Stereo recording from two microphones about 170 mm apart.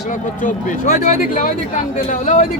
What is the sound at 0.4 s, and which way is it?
Speech, 50° left (ahead or behind).